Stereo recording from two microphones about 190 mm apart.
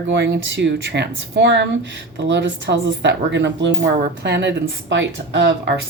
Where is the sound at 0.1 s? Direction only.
70° right (ahead or behind).